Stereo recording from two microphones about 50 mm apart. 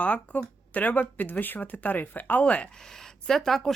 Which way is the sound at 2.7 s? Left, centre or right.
Centre.